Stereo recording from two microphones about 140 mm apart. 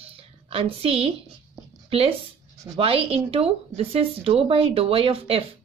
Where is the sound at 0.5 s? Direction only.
45° right (ahead or behind).